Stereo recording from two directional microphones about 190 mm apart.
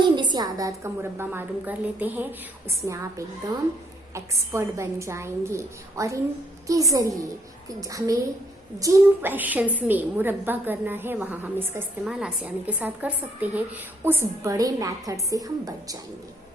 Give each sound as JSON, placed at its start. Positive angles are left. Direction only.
{"t": 0.2, "sound": "a woman's voice", "side_deg": -20}